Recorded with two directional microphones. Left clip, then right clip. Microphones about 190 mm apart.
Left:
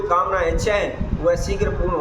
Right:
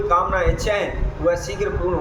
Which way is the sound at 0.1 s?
10° left (ahead or behind).